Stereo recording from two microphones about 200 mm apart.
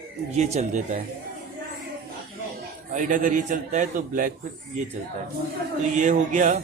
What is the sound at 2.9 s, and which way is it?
A man's voice, 40° right (ahead or behind).